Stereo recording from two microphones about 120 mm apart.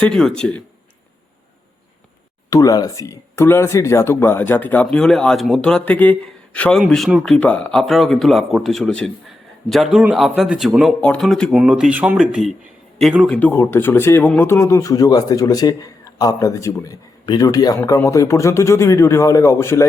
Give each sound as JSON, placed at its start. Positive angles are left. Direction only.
{"t": 0.1, "sound": "speech", "side_deg": 5}
{"t": 2.5, "sound": "speech", "side_deg": 30}
{"t": 11.5, "sound": "speech", "side_deg": -5}
{"t": 13.2, "sound": "speech", "side_deg": 10}